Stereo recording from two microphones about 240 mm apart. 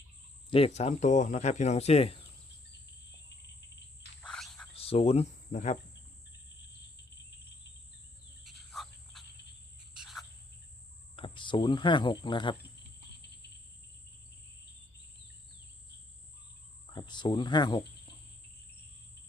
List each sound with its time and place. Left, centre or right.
0.5 s speech: left
4.2 s frog: centre
4.7 s speech: left
8.4 s frog: centre
9.9 s cricket: centre
11.2 s speech: centre
16.9 s cricket: centre